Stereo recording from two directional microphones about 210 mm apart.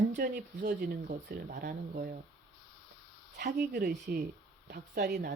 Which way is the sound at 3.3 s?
50° right (ahead or behind).